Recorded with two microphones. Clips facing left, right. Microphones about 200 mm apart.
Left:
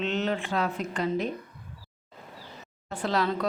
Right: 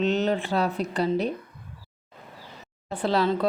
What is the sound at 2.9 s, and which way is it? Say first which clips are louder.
Speech: right 4 dB; 30° right (ahead or behind).